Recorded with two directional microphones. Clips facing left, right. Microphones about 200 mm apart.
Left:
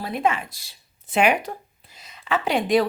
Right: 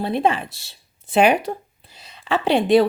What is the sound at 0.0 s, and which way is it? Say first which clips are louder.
Speech: right 4 dB; 30° right (ahead or behind).